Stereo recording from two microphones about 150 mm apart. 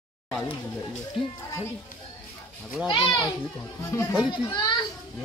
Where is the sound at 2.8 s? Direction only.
30° left (ahead or behind).